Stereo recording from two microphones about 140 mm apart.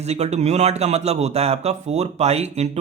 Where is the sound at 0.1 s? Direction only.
55° right (ahead or behind).